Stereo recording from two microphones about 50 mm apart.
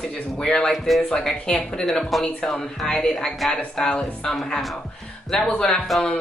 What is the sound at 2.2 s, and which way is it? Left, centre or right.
Speech, centre.